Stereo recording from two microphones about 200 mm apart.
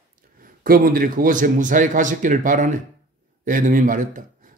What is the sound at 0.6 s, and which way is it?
Speech, 45° right (ahead or behind).